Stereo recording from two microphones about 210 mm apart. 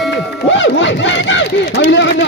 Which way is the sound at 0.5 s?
60° left (ahead or behind).